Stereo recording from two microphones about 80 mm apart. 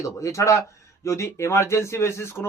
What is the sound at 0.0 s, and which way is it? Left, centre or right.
A man's voice, left.